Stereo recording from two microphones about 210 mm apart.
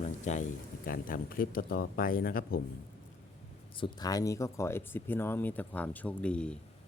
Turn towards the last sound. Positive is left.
turn(degrees=5)  # may be behind; listen again after turning